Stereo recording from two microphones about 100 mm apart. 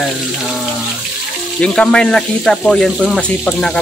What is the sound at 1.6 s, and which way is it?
Speech, 10° left (ahead or behind).